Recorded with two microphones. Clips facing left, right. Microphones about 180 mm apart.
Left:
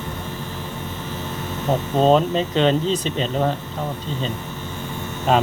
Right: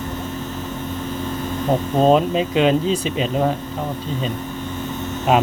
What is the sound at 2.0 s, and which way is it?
Speech, 5° right (ahead or behind).